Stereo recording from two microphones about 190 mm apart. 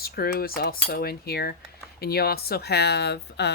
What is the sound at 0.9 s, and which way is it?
Speech, 55° left (ahead or behind).